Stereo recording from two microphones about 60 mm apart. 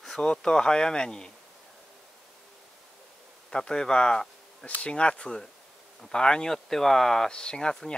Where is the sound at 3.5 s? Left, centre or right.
Centre.